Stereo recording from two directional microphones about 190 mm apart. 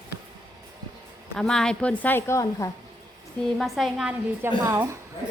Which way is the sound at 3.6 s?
Centre (ahead or behind).